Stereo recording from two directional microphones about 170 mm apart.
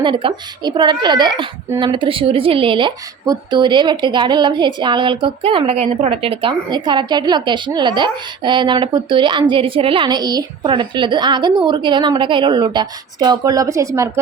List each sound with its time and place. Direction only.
0.0 s a woman's voice: 30° right (ahead or behind)